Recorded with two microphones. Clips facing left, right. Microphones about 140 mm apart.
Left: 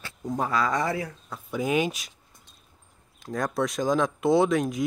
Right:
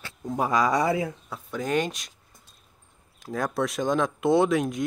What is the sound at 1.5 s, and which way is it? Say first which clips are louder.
Speech: left 1 dB; 10° left (ahead or behind).